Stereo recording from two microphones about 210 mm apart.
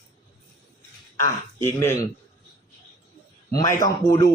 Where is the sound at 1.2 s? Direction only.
10° left (ahead or behind).